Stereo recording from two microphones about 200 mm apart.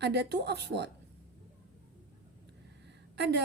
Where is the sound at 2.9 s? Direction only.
60° right (ahead or behind).